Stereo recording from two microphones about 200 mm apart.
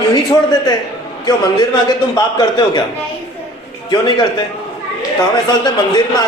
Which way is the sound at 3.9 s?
20° left (ahead or behind).